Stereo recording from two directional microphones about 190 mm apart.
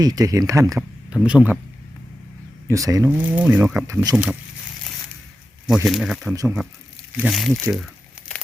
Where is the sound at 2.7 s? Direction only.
15° right (ahead or behind).